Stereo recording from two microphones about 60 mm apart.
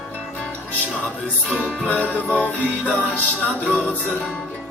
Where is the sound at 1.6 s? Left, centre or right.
Centre.